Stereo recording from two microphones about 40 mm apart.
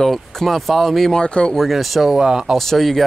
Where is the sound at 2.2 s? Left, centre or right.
Centre.